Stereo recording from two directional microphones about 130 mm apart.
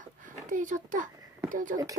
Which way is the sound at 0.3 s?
80° right.